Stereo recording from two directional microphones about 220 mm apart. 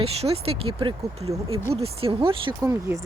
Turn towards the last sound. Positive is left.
turn(degrees=-15)  # may be behind; listen again after turning